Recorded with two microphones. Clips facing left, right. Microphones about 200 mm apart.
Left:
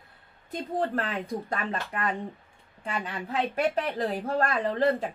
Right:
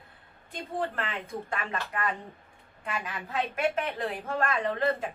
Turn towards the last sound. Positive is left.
turn(degrees=35)  # may be behind; listen again after turning